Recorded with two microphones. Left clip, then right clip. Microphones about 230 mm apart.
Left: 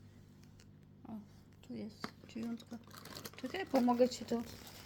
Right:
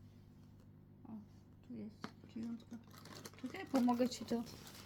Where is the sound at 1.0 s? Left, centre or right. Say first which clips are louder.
Left 4 dB; left.